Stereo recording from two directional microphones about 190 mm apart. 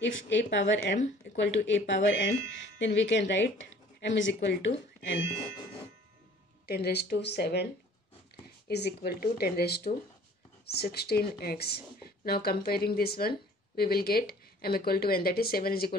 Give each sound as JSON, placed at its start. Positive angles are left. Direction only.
{"t": 0.0, "sound": "speech", "side_deg": 70}
{"t": 6.7, "sound": "speech", "side_deg": 55}
{"t": 8.6, "sound": "speech", "side_deg": 60}